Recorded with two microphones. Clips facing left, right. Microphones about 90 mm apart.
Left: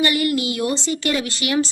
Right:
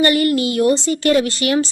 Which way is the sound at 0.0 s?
40° right (ahead or behind).